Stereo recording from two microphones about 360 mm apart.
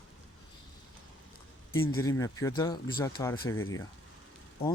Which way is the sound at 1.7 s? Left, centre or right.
Left.